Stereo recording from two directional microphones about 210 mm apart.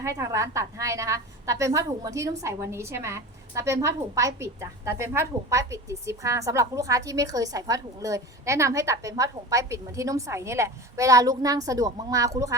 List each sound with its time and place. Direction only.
0.0 s a woman's voice: 15° right (ahead or behind)